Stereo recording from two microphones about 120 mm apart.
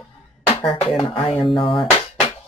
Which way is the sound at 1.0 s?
45° left (ahead or behind).